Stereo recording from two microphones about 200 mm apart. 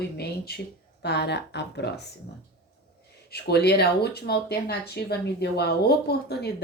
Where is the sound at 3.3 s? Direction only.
55° left (ahead or behind).